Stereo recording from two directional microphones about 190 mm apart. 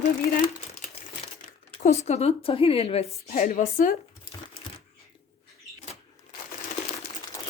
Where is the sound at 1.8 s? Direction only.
35° left (ahead or behind).